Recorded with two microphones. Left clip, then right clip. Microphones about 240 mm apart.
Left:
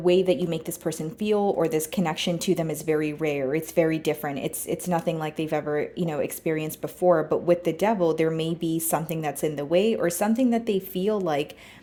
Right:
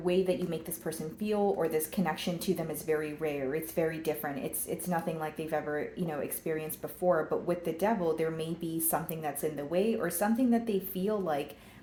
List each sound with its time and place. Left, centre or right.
0.0 s speech: left